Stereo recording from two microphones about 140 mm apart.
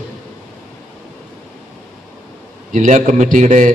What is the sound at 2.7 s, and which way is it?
A man's voice, 65° right (ahead or behind).